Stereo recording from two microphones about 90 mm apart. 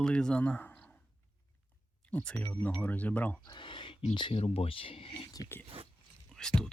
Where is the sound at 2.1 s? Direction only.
15° left (ahead or behind).